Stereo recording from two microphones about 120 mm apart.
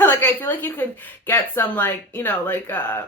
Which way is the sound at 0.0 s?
20° left (ahead or behind).